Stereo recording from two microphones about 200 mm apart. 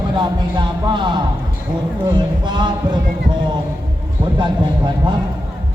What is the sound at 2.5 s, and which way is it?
Speech, 20° right (ahead or behind).